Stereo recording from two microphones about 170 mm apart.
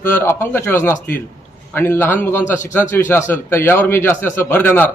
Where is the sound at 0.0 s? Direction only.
15° left (ahead or behind).